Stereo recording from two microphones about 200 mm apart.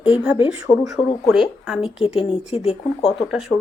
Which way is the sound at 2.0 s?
25° left (ahead or behind).